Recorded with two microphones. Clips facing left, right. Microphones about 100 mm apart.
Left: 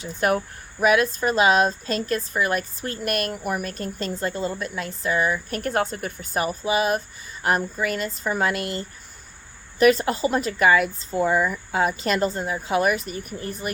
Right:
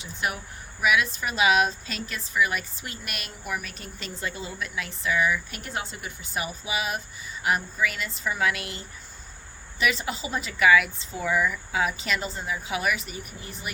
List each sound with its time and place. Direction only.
0.0 s speech: 45° left (ahead or behind)
9.7 s speech: 45° left (ahead or behind)